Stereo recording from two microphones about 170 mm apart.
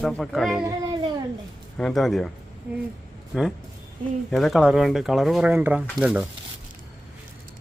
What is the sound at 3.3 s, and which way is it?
Speech, centre (ahead or behind).